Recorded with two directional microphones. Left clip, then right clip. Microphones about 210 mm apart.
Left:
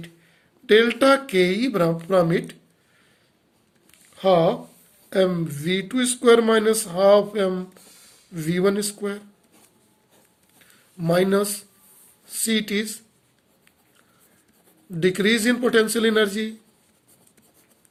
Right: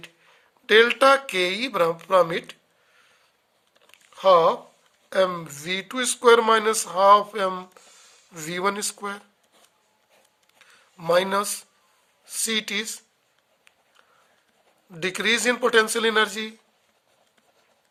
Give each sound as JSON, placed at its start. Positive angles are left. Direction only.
{"t": 0.7, "sound": "speech", "side_deg": -40}
{"t": 4.1, "sound": "speech", "side_deg": -40}
{"t": 10.6, "sound": "speech", "side_deg": -40}
{"t": 14.9, "sound": "speech", "side_deg": -35}